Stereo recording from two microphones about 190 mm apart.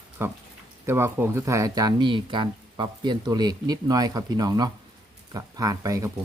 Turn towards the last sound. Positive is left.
turn(degrees=-15)  # may be behind; listen again after turning